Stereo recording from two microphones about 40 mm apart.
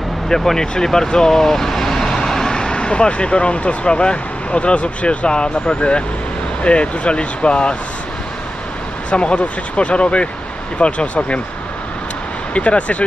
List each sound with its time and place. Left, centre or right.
0.3 s speech: centre; by 7.7 s left
9.1 s speech: left
12.5 s speech: left